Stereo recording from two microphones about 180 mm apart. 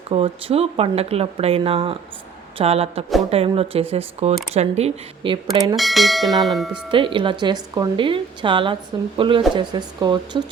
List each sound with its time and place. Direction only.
0.1 s speech: 35° right (ahead or behind)
5.7 s speech: centre (ahead or behind)
6.9 s a woman's voice: 30° right (ahead or behind)